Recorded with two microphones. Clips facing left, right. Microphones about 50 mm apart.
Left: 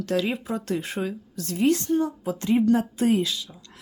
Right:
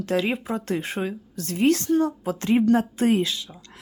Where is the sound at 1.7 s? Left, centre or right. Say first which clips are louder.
Right 2 dB; right.